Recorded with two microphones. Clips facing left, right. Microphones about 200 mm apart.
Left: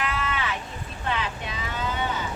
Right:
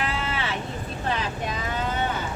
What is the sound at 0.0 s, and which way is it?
Vehicle, 30° right (ahead or behind).